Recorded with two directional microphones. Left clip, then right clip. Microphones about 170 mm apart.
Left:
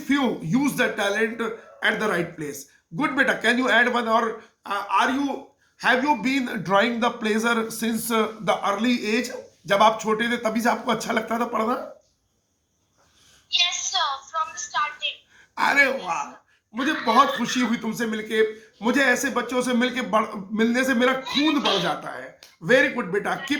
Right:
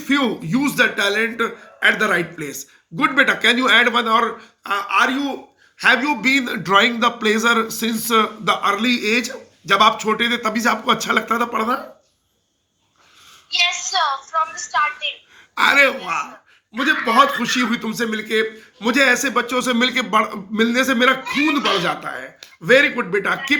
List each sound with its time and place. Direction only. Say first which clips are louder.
0.0 s a man's voice: right 4 dB; 5° left (ahead or behind)
13.5 s a sound: right 4 dB; 45° right (ahead or behind)
15.5 s a man's voice: right 5 dB; 5° left (ahead or behind)
17.4 s a man's voice: right 5 dB; 5° left (ahead or behind)